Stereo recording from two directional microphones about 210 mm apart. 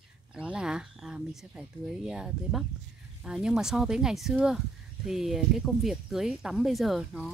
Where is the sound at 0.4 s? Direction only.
5° right (ahead or behind).